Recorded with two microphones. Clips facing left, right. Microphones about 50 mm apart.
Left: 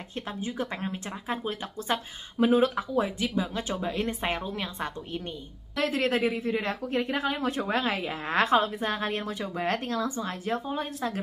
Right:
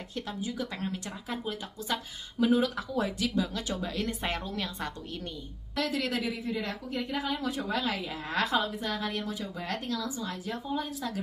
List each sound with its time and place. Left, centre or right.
0.4 s a woman's voice: left
5.8 s speech: left